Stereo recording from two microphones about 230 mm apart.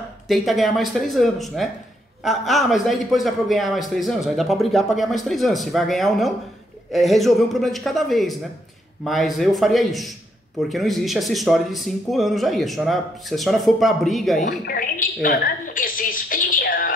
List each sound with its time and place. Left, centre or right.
0.3 s a man's voice: centre
14.6 s speech: left
15.2 s a sound: left